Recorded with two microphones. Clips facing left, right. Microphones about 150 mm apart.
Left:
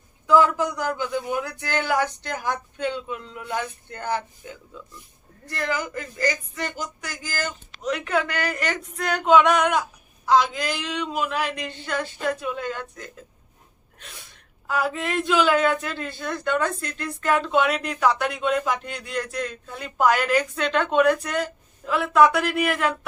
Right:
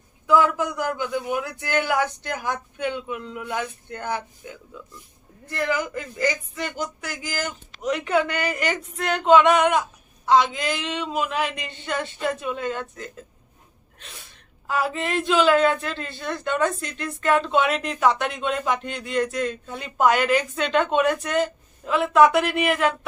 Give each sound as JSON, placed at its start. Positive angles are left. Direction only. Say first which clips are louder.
{"t": 0.3, "sound": "a man's voice", "louder": "left 1 dB", "side_deg": -10}
{"t": 5.5, "sound": "a man's voice", "louder": "right 2 dB", "side_deg": -15}
{"t": 6.7, "sound": "a man's voice", "louder": "right 3 dB", "side_deg": -5}
{"t": 14.7, "sound": "a man's voice", "louder": "right 1 dB", "side_deg": 0}